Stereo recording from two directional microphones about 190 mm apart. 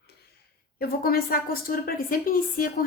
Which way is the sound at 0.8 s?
50° left (ahead or behind).